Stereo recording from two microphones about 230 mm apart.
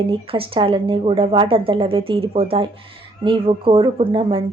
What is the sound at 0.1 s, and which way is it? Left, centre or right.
A woman's voice, right.